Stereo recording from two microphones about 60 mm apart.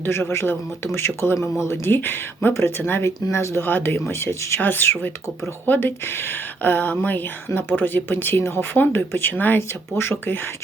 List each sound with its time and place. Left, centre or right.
0.1 s speech: left
2.5 s speech: left
4.1 s speech: left
4.6 s speech: left
9.6 s speech: left